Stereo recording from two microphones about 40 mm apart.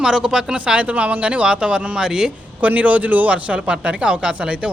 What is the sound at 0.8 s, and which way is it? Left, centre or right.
Speech, right.